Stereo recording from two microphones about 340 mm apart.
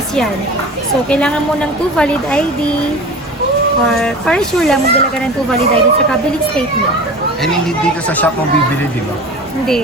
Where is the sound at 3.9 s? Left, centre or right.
Centre.